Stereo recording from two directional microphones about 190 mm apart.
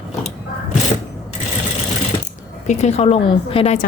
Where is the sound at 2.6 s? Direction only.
35° left (ahead or behind).